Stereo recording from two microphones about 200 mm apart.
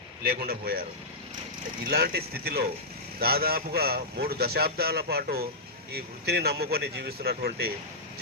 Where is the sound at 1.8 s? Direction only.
50° right (ahead or behind).